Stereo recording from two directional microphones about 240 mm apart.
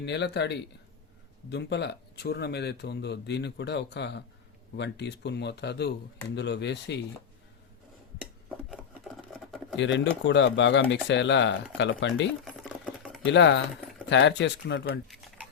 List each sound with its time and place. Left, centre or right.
0.0 s speech: left
8.7 s a sound: centre
9.7 s speech: left
12.5 s typing: centre
13.2 s speech: left
15.0 s a sound: centre